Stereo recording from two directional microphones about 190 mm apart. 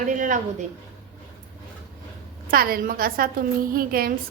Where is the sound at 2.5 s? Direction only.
50° right (ahead or behind).